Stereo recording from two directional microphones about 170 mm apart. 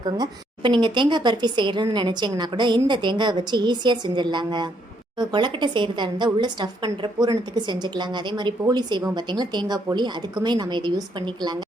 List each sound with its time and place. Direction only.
0.0 s speech: 25° right (ahead or behind)